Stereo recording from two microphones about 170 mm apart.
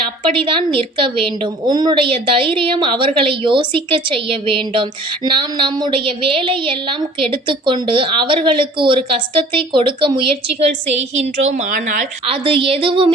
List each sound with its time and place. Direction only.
0.3 s a woman's voice: 30° right (ahead or behind); by 12.0 s 50° right (ahead or behind)
12.3 s a woman's voice: 30° right (ahead or behind)